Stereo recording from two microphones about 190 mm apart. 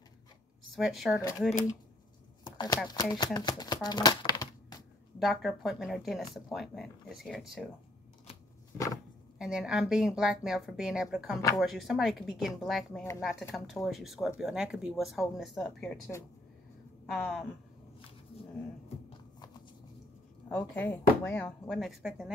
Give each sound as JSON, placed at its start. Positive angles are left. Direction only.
{"t": 0.7, "sound": "speech", "side_deg": 0}
{"t": 2.5, "sound": "a sound", "side_deg": 20}
{"t": 2.9, "sound": "speech", "side_deg": 20}
{"t": 3.3, "sound": "shuffling cards", "side_deg": 20}
{"t": 5.2, "sound": "speech", "side_deg": 0}
{"t": 8.7, "sound": "a sound", "side_deg": 20}
{"t": 9.4, "sound": "speech", "side_deg": -5}
{"t": 20.4, "sound": "speech", "side_deg": 5}